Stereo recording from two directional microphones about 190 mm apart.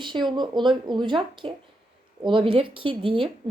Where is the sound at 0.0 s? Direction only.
25° right (ahead or behind).